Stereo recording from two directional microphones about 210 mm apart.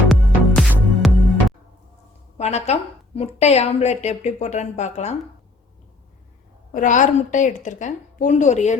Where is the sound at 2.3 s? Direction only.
30° left (ahead or behind).